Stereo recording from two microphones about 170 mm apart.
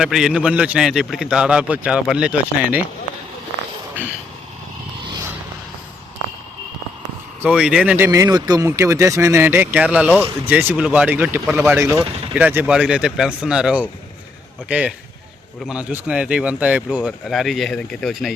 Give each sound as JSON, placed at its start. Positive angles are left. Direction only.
{"t": 0.0, "sound": "a man's voice", "side_deg": -5}
{"t": 7.4, "sound": "a man's voice", "side_deg": -5}